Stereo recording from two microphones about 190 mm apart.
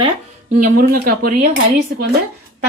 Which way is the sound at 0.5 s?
45° right (ahead or behind).